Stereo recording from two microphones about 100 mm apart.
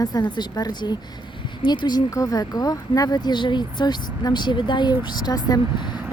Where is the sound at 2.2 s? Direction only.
35° left (ahead or behind).